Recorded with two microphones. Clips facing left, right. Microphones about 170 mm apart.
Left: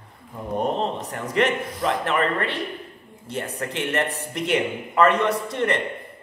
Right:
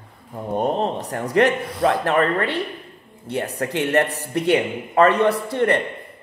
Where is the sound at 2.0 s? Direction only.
40° right (ahead or behind).